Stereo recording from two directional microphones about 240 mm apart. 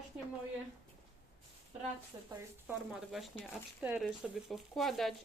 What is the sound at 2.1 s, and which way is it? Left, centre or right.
Speech, centre.